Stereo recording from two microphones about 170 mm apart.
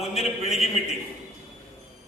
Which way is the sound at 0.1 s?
35° left (ahead or behind).